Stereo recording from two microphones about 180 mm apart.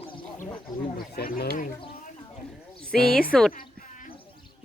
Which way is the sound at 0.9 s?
55° left (ahead or behind).